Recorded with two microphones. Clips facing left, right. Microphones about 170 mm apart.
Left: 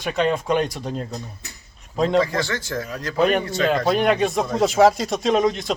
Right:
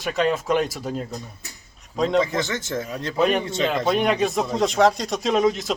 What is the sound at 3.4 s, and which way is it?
Speech, 25° right (ahead or behind).